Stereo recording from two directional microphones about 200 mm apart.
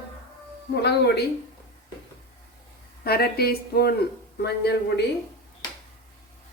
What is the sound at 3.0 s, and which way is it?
Speech, 50° left (ahead or behind).